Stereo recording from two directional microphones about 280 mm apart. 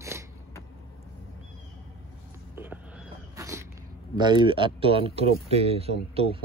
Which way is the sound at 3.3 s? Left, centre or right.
Centre.